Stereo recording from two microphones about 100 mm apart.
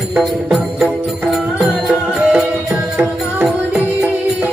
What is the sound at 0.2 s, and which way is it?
Music, 5° right (ahead or behind).